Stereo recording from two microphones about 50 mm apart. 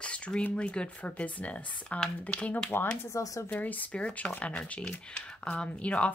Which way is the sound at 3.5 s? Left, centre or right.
Left.